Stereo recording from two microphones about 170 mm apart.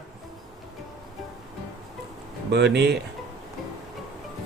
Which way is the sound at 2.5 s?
80° right.